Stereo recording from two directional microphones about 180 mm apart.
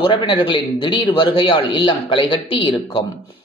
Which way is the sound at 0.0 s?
25° left (ahead or behind).